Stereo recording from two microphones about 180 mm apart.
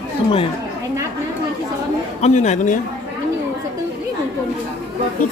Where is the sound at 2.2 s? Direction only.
40° left (ahead or behind).